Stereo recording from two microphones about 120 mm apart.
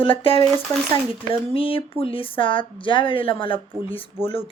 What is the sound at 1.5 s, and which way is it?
Speech, 50° left (ahead or behind).